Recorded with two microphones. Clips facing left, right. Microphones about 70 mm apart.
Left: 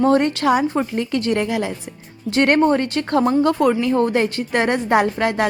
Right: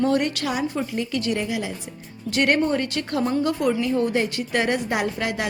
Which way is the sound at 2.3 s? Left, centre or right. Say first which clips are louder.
Left 5 dB; left.